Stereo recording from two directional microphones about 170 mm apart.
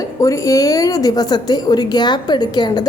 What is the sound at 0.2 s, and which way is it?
A woman's voice, 20° left (ahead or behind).